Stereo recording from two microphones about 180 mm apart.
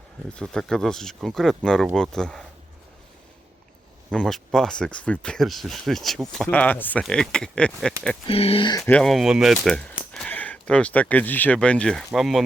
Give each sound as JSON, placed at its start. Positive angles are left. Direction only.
{"t": 0.3, "sound": "speech", "side_deg": 5}
{"t": 4.1, "sound": "speech", "side_deg": 5}
{"t": 8.3, "sound": "speech", "side_deg": 30}
{"t": 8.8, "sound": "speech", "side_deg": 5}